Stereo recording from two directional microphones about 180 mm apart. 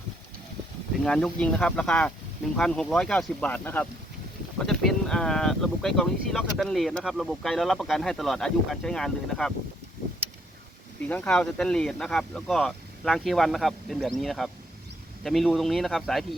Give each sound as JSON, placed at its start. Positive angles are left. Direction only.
{"t": 1.0, "sound": "speech", "side_deg": 5}
{"t": 11.1, "sound": "speech", "side_deg": 5}